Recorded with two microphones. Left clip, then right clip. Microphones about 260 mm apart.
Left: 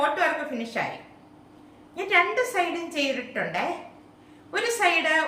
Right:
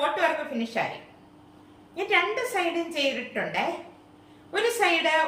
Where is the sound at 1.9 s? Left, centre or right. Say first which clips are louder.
Left 2 dB; centre.